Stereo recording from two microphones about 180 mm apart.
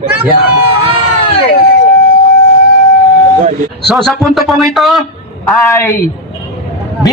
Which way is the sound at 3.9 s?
Centre (ahead or behind).